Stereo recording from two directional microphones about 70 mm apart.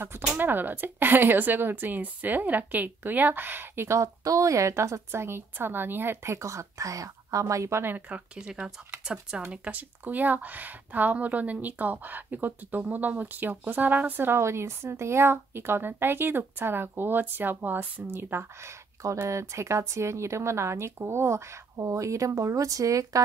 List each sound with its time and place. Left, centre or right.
0.4 s speech: right
7.8 s speech: right
8.4 s speech: centre; by 23.2 s right